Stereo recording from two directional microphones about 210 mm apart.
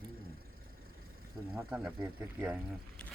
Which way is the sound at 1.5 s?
5° right (ahead or behind).